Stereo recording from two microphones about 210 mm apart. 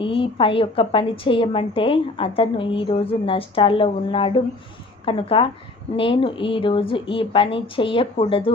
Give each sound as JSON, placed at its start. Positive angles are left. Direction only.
{"t": 0.0, "sound": "a woman's voice", "side_deg": 25}